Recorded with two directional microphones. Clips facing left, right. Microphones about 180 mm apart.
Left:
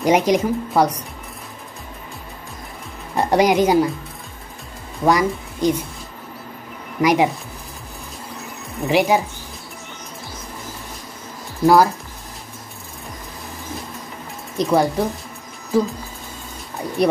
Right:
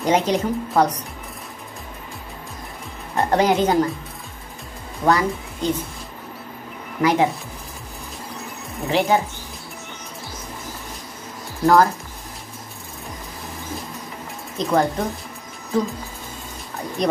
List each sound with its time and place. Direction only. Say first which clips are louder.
0.0 s speech: left 3 dB; 15° left (ahead or behind)
3.2 s speech: left 2 dB; 15° left (ahead or behind)
5.0 s speech: left 2 dB; 15° left (ahead or behind)
7.0 s speech: left 2 dB; 15° left (ahead or behind)
8.8 s speech: left 2 dB; 15° left (ahead or behind)
11.6 s speech: left 2 dB; 10° left (ahead or behind)
14.6 s speech: left 3 dB; 10° left (ahead or behind)
17.0 s speech: left 3 dB; 10° left (ahead or behind)